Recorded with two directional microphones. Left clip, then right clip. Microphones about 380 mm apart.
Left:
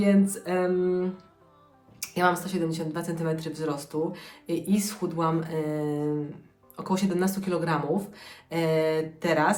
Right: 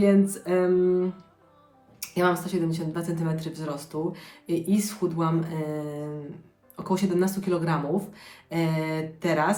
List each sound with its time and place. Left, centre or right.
0.0 s a woman's voice: centre